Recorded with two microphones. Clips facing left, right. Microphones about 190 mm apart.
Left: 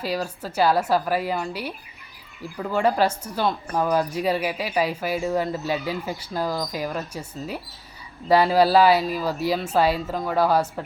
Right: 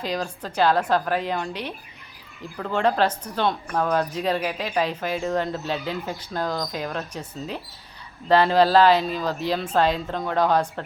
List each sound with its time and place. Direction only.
0.0 s a woman's voice: 5° left (ahead or behind)